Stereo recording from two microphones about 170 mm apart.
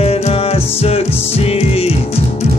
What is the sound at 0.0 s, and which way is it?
Music, 35° left (ahead or behind).